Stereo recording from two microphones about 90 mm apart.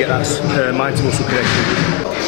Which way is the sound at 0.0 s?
20° left (ahead or behind).